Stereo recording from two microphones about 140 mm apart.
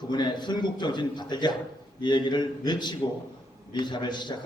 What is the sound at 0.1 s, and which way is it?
A man's voice, 30° left (ahead or behind).